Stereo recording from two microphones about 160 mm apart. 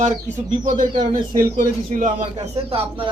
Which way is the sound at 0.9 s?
30° right (ahead or behind).